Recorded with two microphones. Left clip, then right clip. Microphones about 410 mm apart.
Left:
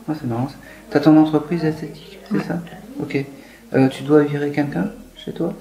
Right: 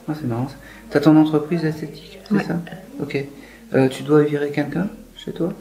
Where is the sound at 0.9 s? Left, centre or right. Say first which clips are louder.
Left 1 dB; centre.